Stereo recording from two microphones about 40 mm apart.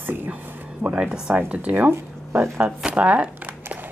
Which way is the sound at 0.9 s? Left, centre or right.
Centre.